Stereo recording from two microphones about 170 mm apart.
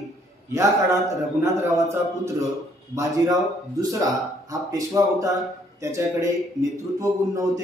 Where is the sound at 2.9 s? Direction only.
20° right (ahead or behind).